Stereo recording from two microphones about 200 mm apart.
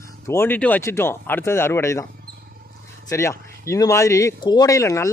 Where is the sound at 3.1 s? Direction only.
15° left (ahead or behind).